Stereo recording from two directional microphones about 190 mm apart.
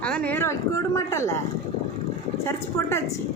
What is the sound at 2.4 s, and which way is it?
Speech, 15° left (ahead or behind).